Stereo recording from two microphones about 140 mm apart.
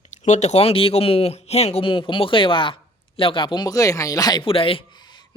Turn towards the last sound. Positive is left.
turn(degrees=30)  # may be behind; listen again after turning